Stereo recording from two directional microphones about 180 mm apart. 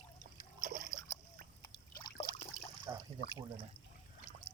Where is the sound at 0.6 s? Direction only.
50° right (ahead or behind).